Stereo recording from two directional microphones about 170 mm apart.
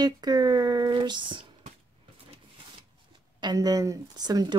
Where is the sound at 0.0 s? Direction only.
25° right (ahead or behind).